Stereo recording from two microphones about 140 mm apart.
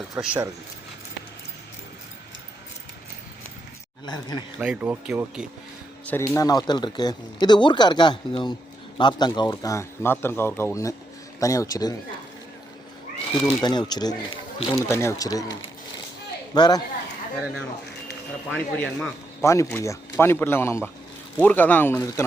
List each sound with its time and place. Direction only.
0.2 s speech: 10° right (ahead or behind)
4.0 s speech: 30° left (ahead or behind)
4.5 s speech: 10° right (ahead or behind)
6.1 s speech: 20° left (ahead or behind)
13.2 s speech: 30° left (ahead or behind)
14.8 s speech: 20° left (ahead or behind)
16.6 s speech: 30° left (ahead or behind)
18.5 s speech: 5° left (ahead or behind)
19.4 s a man's voice: 20° left (ahead or behind)